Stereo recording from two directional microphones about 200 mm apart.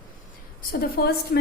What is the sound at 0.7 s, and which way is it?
Speech, 45° left (ahead or behind).